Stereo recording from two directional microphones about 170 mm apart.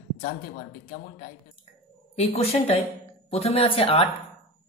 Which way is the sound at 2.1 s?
40° left (ahead or behind).